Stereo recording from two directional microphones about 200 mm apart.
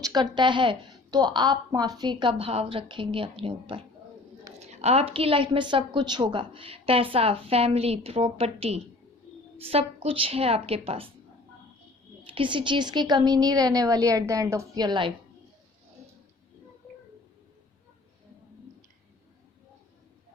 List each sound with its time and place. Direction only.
0.0 s a woman's voice: 20° right (ahead or behind)
12.2 s a woman's voice: 25° right (ahead or behind)